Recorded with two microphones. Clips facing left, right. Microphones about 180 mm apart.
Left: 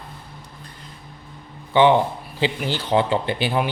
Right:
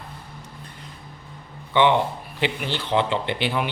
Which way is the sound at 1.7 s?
30° left (ahead or behind).